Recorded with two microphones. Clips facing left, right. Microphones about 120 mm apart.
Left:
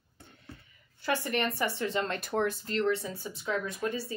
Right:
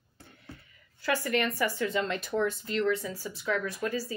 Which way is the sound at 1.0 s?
25° left (ahead or behind).